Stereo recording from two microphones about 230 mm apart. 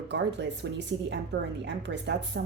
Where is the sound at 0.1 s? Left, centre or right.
Right.